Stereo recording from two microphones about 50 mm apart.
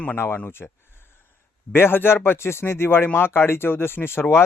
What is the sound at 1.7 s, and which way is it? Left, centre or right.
Speech, left.